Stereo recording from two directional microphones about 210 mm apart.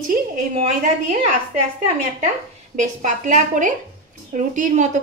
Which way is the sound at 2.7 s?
35° right (ahead or behind).